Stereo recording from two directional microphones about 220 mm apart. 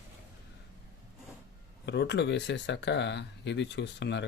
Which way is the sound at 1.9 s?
50° left (ahead or behind).